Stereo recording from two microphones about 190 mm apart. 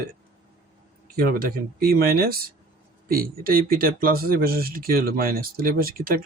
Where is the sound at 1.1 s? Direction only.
50° right (ahead or behind).